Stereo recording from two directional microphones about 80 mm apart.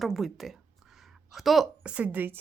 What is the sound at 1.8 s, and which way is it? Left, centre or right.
Speech, centre.